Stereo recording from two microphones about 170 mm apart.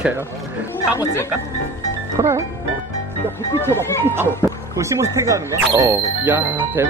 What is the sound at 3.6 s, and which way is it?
Speech, 15° left (ahead or behind).